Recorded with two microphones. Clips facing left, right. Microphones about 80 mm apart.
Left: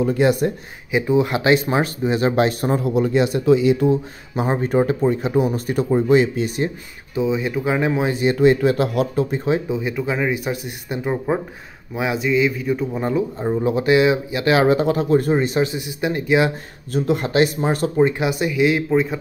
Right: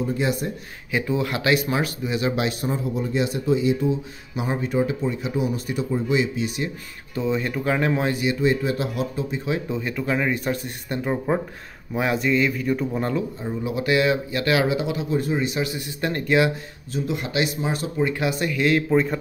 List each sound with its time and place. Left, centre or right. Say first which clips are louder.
0.0 s speech: left 7 dB; left
0.9 s speech: left 6 dB; left
2.7 s speech: left 7 dB; left
4.4 s speech: left 5 dB; left
7.2 s speech: left 4 dB; centre
8.4 s speech: left 7 dB; left
9.7 s speech: left 3 dB; centre
13.4 s speech: left 8 dB; left
13.7 s speech: left 3 dB; left
14.7 s speech: left 8 dB; left
15.6 s speech: left 5 dB; left
16.9 s speech: left 7 dB; left
18.0 s speech: left 2 dB; left
18.9 s speech: left 2 dB; centre